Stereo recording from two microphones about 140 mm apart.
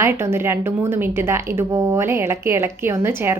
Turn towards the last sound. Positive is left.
turn(degrees=-15)  # may be behind; listen again after turning